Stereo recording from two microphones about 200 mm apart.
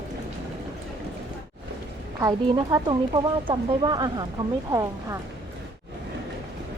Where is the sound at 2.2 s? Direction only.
20° right (ahead or behind).